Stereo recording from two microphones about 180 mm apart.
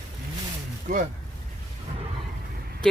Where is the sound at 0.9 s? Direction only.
45° right (ahead or behind).